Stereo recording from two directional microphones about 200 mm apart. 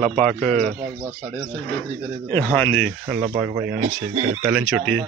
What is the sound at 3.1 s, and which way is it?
Speech, 10° right (ahead or behind).